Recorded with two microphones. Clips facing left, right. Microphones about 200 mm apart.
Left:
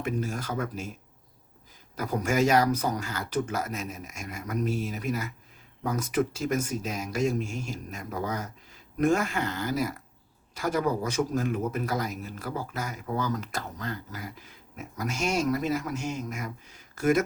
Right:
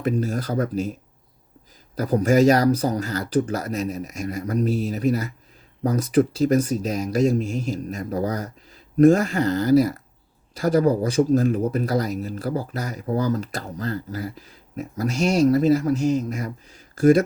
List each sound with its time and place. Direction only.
0.0 s speech: 35° right (ahead or behind)
2.0 s speech: 35° right (ahead or behind)